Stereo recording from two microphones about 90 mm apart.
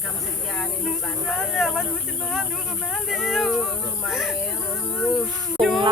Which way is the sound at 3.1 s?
5° right (ahead or behind).